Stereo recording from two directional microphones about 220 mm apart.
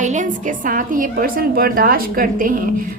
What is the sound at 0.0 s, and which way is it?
A woman's voice, 35° right (ahead or behind).